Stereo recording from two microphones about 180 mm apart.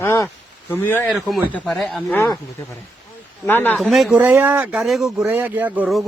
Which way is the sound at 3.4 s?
10° left (ahead or behind).